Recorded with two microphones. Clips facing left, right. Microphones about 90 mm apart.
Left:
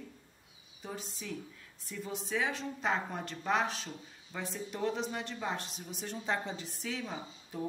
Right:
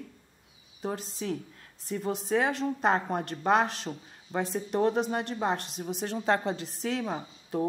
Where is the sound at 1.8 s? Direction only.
65° right (ahead or behind).